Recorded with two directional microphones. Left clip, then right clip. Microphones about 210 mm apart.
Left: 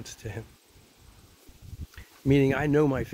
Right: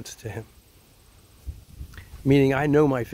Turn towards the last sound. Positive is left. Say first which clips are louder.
# right 4 dB
turn(degrees=-25)  # may be behind; listen again after turning